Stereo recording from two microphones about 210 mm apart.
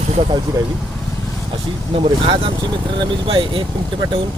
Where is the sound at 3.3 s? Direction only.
25° right (ahead or behind).